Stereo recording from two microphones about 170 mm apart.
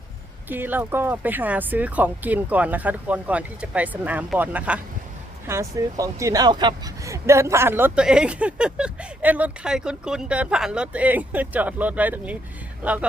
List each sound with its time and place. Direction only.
0.4 s speech: 10° right (ahead or behind)